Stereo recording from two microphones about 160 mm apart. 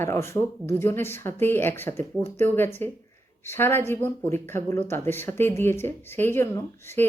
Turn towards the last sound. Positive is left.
turn(degrees=15)  # may be behind; listen again after turning